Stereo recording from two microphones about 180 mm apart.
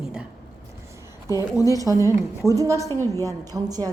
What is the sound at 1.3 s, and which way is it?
Speech, 20° left (ahead or behind).